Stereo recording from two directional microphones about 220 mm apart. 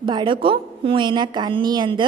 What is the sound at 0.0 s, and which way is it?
A woman's voice, 20° right (ahead or behind).